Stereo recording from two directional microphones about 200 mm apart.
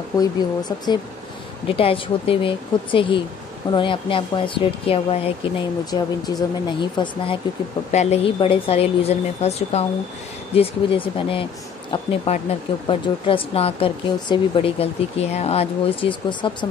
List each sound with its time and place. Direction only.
0.2 s a woman's voice: 20° left (ahead or behind)